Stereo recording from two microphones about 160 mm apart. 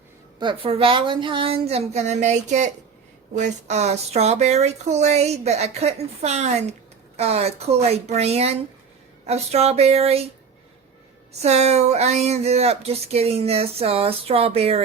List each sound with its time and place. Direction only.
0.3 s speech: 30° right (ahead or behind)
11.4 s speech: 45° right (ahead or behind)